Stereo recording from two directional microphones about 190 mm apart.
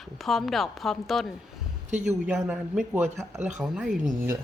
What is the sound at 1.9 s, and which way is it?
Speech, 40° right (ahead or behind).